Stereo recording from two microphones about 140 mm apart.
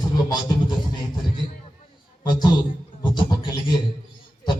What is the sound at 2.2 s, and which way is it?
Speech, 30° left (ahead or behind).